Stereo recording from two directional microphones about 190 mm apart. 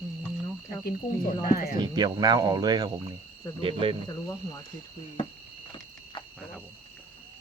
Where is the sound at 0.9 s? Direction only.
50° left (ahead or behind).